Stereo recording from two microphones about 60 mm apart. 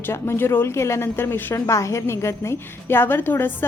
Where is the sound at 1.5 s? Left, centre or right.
Left.